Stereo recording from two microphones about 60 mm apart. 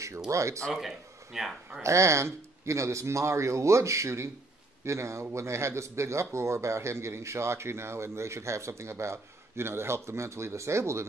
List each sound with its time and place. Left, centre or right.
0.3 s speech: right
0.7 s speech: centre
1.8 s speech: right